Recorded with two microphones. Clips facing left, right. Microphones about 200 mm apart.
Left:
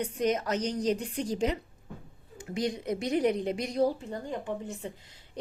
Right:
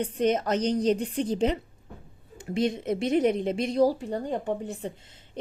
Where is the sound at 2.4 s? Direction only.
25° right (ahead or behind).